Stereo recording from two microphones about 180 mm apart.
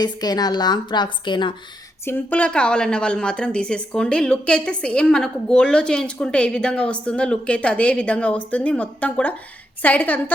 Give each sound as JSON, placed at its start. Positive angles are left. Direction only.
{"t": 0.0, "sound": "a woman's voice", "side_deg": 20}
{"t": 2.0, "sound": "a woman's voice", "side_deg": 10}